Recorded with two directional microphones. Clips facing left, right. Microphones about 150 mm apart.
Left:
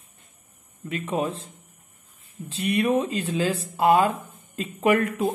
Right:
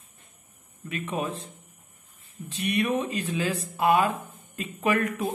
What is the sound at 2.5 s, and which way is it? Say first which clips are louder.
Speech: left 4 dB; 30° left (ahead or behind).